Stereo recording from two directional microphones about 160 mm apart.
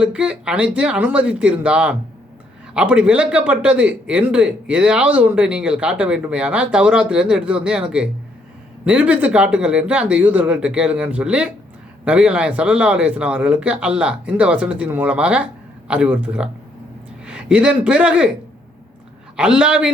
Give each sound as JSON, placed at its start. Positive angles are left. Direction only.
{"t": 0.0, "sound": "a man's voice", "side_deg": -5}
{"t": 19.4, "sound": "a man's voice", "side_deg": -5}